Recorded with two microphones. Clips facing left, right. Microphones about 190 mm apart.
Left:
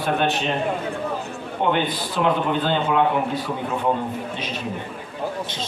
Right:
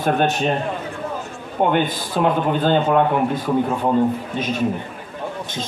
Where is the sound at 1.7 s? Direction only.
45° right (ahead or behind).